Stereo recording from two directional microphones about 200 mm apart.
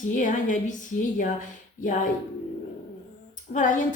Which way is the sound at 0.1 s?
40° left (ahead or behind).